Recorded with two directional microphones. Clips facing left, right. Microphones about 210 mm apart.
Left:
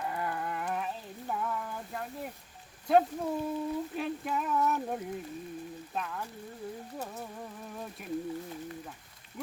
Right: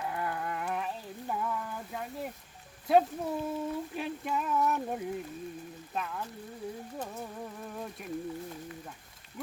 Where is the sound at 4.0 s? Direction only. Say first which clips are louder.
Left 1 dB; centre (ahead or behind).